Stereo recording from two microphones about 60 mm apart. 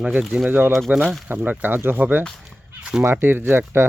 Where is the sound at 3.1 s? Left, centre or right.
Right.